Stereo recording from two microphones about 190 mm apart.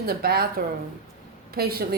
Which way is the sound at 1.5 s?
55° right (ahead or behind).